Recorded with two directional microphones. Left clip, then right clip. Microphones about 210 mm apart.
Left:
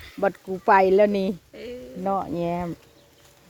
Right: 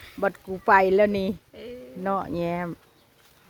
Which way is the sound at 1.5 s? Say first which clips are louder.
Left 3 dB; 30° left (ahead or behind).